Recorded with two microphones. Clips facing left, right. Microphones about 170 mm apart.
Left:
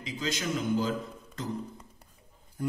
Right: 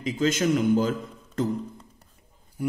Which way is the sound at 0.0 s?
50° right (ahead or behind).